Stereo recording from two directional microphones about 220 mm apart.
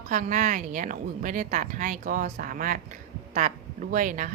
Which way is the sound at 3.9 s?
35° right (ahead or behind).